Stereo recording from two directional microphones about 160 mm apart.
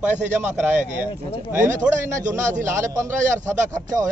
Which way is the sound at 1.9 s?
50° right (ahead or behind).